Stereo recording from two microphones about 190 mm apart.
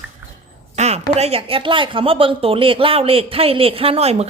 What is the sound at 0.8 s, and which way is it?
Speech, 35° right (ahead or behind).